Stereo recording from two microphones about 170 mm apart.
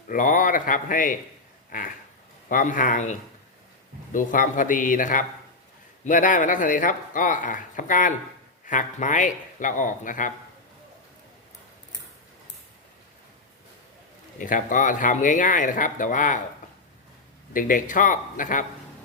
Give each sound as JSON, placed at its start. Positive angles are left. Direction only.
{"t": 0.1, "sound": "speech", "side_deg": 50}
{"t": 2.5, "sound": "speech", "side_deg": 50}
{"t": 14.3, "sound": "speech", "side_deg": 50}
{"t": 17.5, "sound": "speech", "side_deg": 50}